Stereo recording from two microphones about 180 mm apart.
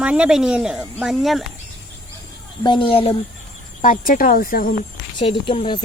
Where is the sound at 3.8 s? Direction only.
50° left (ahead or behind).